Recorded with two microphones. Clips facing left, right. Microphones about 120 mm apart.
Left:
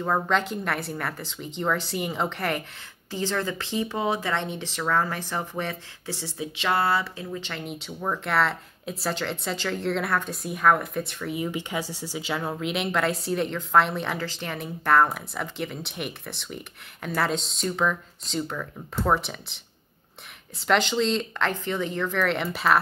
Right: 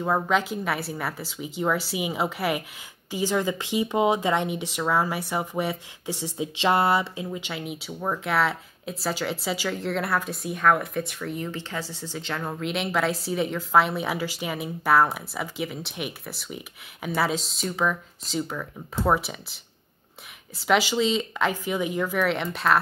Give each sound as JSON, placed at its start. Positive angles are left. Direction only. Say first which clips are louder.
{"t": 0.0, "sound": "speech", "louder": "right 1 dB", "side_deg": -5}
{"t": 11.3, "sound": "speech", "louder": "left 5 dB", "side_deg": 10}